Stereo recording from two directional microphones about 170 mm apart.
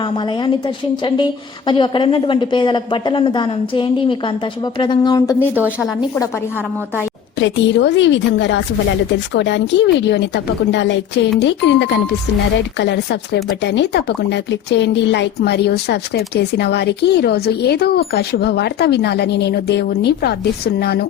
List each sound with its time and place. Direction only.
0.0 s a woman's voice: 30° left (ahead or behind)
5.5 s a woman's voice: 10° right (ahead or behind)
7.3 s a woman's voice: 90° left; by 21.1 s 65° left (ahead or behind)